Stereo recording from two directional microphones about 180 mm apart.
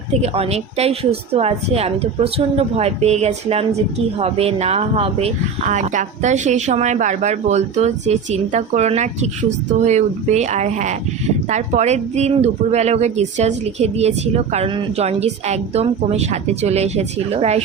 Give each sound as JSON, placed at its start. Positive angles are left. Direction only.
{"t": 0.1, "sound": "a woman's voice", "side_deg": -35}